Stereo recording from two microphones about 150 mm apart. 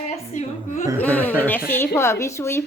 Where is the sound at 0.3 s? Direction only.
55° left (ahead or behind).